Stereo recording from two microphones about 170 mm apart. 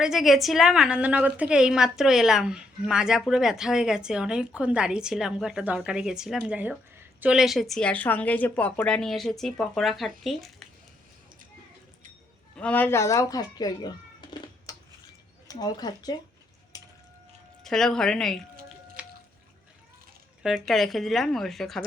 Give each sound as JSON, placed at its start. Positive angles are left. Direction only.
{"t": 0.0, "sound": "a woman's voice", "side_deg": 0}
{"t": 12.5, "sound": "speech", "side_deg": 10}
{"t": 16.7, "sound": "a sound", "side_deg": 20}
{"t": 17.6, "sound": "a woman's voice", "side_deg": 5}
{"t": 19.0, "sound": "a sound", "side_deg": -5}
{"t": 20.4, "sound": "a woman's voice", "side_deg": 0}